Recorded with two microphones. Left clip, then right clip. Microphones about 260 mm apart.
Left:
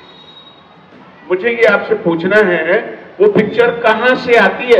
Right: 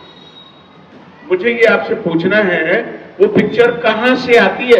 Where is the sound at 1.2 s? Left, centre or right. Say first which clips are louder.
Even; centre.